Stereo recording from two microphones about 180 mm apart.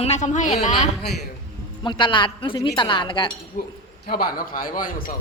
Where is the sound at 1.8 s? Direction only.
25° left (ahead or behind).